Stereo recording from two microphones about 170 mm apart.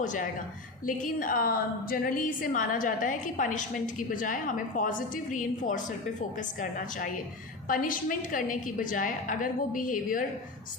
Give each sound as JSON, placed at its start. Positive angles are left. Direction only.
{"t": 0.0, "sound": "a woman's voice", "side_deg": 50}